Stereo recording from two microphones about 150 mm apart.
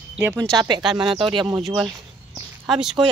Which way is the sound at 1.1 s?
35° right (ahead or behind).